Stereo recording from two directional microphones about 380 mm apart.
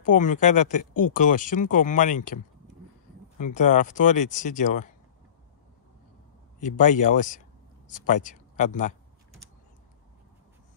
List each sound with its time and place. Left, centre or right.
0.0 s speech: centre
6.6 s speech: centre